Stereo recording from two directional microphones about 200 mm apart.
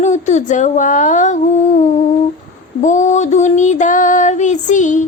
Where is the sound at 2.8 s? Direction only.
35° left (ahead or behind).